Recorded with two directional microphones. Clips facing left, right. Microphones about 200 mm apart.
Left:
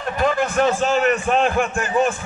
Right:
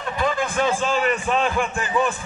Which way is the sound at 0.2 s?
50° left (ahead or behind).